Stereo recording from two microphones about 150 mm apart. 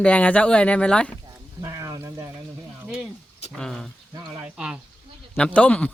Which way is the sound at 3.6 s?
5° left (ahead or behind).